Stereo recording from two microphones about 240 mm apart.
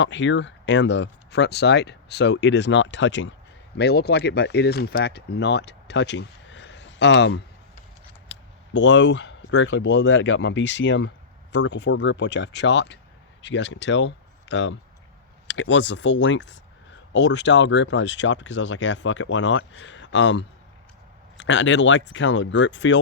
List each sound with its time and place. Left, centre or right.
0.0 s speech: left